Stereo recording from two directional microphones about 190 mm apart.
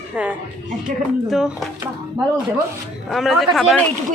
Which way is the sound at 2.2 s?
20° right (ahead or behind).